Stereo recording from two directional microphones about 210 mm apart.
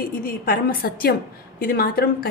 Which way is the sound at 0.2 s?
45° left (ahead or behind).